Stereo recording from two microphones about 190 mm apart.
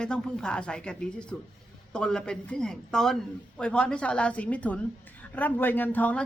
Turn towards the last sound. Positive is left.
turn(degrees=10)  # may be behind; listen again after turning